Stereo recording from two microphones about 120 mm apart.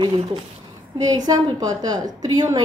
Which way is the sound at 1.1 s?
35° right (ahead or behind).